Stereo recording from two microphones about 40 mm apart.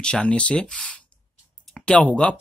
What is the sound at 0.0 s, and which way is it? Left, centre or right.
Speech, left.